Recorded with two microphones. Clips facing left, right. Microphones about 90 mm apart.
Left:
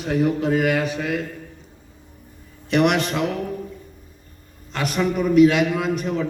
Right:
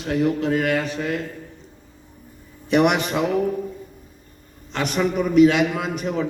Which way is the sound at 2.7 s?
5° right (ahead or behind).